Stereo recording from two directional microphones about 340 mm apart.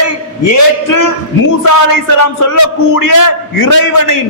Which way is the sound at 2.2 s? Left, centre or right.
Left.